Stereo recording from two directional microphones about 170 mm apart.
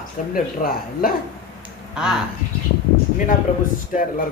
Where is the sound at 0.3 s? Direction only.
60° left (ahead or behind).